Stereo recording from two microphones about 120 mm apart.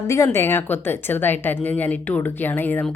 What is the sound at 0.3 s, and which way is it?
Speech, 20° left (ahead or behind).